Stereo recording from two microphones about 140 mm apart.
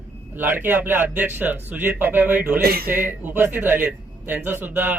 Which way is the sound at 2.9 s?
15° right (ahead or behind).